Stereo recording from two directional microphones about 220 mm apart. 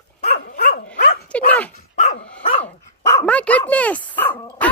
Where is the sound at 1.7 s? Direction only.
35° left (ahead or behind).